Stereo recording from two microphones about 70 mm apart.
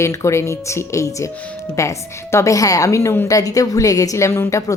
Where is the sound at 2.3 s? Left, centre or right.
Left.